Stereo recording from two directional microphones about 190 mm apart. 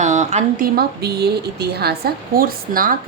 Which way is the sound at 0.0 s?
40° right (ahead or behind).